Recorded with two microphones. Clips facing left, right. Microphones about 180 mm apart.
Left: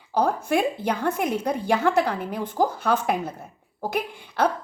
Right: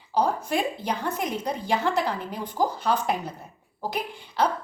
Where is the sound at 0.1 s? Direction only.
55° left (ahead or behind).